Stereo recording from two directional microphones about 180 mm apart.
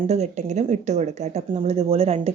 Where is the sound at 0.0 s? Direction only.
40° right (ahead or behind).